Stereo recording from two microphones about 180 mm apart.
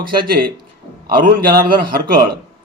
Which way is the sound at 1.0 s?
55° right (ahead or behind).